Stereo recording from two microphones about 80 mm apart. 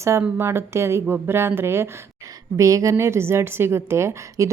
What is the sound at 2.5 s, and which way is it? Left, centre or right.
A woman's voice, right.